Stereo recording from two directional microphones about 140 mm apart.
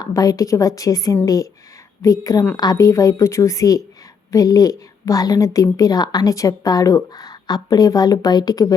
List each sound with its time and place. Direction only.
0.0 s a woman's voice: 25° left (ahead or behind)